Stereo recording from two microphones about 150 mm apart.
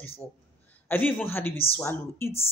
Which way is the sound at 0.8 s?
10° left (ahead or behind).